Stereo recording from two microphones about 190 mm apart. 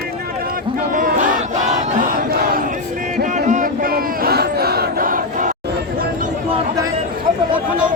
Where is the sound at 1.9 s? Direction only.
45° right (ahead or behind).